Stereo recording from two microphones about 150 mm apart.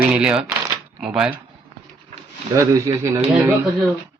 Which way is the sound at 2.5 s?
20° right (ahead or behind).